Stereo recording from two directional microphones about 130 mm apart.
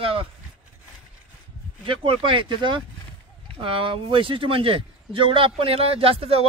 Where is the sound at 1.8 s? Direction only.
45° right (ahead or behind).